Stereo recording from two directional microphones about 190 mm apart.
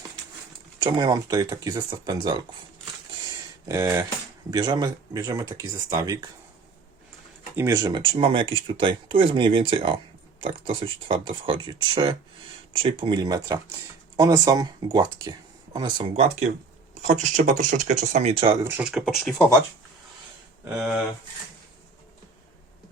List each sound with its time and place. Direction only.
0.8 s speech: 25° right (ahead or behind)
3.2 s a sound: 15° right (ahead or behind)
4.5 s speech: 20° right (ahead or behind)
7.5 s speech: 15° right (ahead or behind)
17.3 s speech: 40° right (ahead or behind)
18.6 s speech: 10° right (ahead or behind)
20.7 s speech: 5° right (ahead or behind)